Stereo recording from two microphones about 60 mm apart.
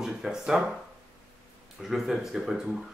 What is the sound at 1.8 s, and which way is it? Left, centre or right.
Speech, centre.